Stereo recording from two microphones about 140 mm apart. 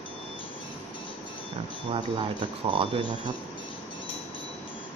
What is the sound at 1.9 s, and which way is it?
Speech, 35° right (ahead or behind).